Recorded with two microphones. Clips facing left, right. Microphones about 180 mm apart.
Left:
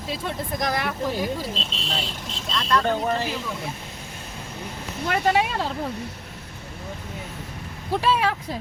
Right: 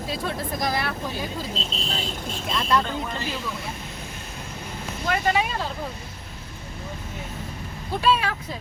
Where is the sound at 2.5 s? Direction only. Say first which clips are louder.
Even; 5° right (ahead or behind).